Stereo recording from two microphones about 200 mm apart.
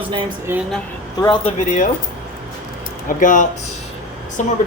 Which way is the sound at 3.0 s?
40° left (ahead or behind).